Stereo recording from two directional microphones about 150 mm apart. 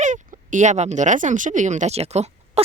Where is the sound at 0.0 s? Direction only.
55° right (ahead or behind).